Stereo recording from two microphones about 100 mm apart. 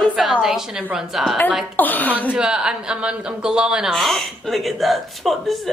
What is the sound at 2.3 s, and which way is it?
A woman's voice, 10° right (ahead or behind).